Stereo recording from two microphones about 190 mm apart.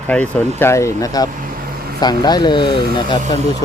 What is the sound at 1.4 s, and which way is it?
Vehicle, 50° right (ahead or behind).